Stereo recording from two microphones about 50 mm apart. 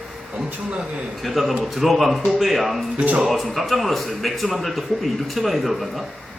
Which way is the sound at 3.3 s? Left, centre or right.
Centre.